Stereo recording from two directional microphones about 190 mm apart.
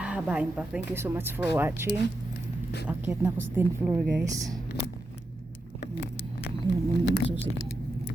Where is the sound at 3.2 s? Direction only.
10° right (ahead or behind).